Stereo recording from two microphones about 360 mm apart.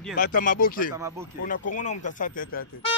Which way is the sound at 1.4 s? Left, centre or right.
Left.